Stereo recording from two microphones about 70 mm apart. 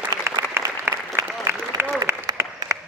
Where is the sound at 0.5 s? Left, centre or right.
Right.